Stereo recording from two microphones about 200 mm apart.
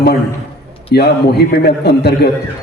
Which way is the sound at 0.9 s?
55° left (ahead or behind).